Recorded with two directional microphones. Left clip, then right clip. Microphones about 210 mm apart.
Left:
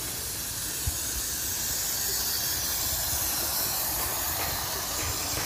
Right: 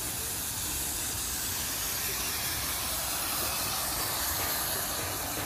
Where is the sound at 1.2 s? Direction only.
Centre (ahead or behind).